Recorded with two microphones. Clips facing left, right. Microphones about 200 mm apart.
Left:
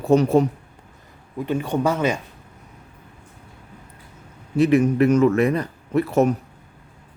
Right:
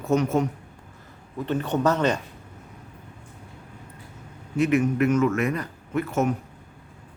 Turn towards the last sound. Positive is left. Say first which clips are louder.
# left 6 dB
turn(degrees=35)  # may be behind; listen again after turning